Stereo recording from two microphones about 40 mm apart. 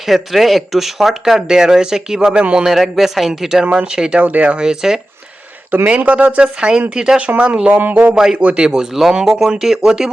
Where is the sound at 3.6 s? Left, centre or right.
Right.